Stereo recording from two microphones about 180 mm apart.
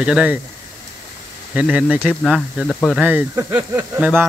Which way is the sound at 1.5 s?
5° right (ahead or behind).